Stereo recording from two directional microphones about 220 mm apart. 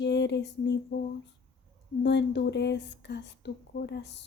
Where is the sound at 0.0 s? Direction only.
50° left (ahead or behind).